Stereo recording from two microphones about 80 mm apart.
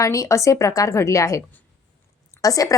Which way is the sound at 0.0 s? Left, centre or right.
Left.